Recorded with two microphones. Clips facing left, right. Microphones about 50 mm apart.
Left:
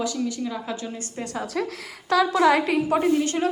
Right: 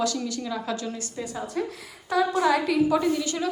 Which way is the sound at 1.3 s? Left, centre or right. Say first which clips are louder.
Left 3 dB; left.